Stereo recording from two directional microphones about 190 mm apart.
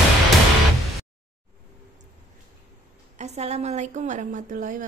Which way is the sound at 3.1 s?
35° right (ahead or behind).